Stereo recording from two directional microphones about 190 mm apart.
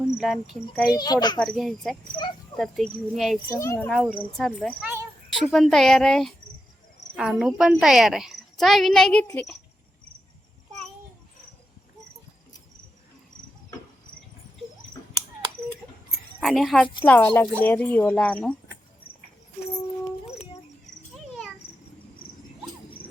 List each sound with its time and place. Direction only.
0.2 s speech: centre (ahead or behind)
0.9 s a child's voice: 20° left (ahead or behind)
1.4 s speech: 5° left (ahead or behind)
3.5 s speech: 15° left (ahead or behind)
3.8 s speech: centre (ahead or behind)
16.4 s speech: centre (ahead or behind)
20.2 s a sound: 35° left (ahead or behind)